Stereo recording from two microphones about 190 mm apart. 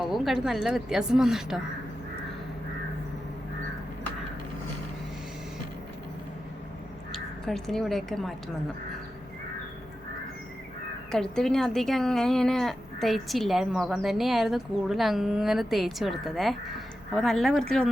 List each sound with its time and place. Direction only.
0.0 s speech: centre (ahead or behind)
7.1 s speech: centre (ahead or behind)
11.1 s speech: centre (ahead or behind)